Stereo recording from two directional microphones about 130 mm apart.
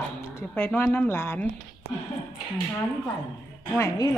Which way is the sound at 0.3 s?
15° left (ahead or behind).